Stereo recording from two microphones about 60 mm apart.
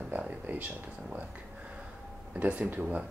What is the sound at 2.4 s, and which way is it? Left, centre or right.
Speech, right.